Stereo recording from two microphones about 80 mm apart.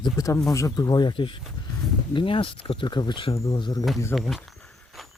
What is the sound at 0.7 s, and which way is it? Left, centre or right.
Speech, left.